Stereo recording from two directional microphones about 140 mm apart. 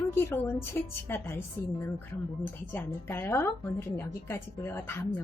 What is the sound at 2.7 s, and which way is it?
A woman's voice, 15° left (ahead or behind).